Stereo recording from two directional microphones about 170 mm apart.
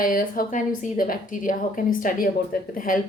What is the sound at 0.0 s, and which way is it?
A woman's voice, 55° left (ahead or behind).